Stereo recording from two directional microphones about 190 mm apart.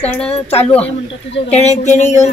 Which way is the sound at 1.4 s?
35° left (ahead or behind).